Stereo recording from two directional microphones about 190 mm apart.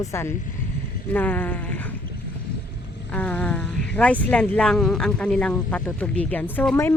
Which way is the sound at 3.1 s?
10° left (ahead or behind).